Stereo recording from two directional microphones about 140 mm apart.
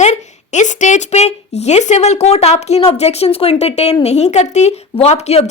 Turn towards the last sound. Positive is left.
turn(degrees=50)  # may be behind; listen again after turning